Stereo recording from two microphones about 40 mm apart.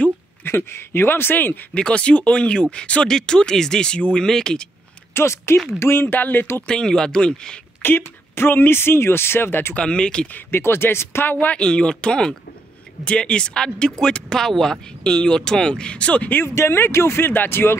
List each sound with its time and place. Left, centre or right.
0.4 s speech: left
1.7 s speech: left
3.1 s speech: centre
5.1 s speech: left
5.8 s speech: left
6.6 s speech: centre
7.8 s speech: left
9.8 s speech: left
10.5 s speech: left
11.5 s speech: left
16.4 s speech: left